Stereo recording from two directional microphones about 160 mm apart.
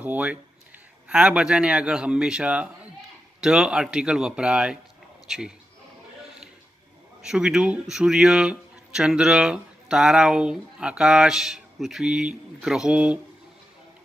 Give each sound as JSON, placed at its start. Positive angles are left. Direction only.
{"t": 0.0, "sound": "a man's voice", "side_deg": -10}
{"t": 7.2, "sound": "speech", "side_deg": -5}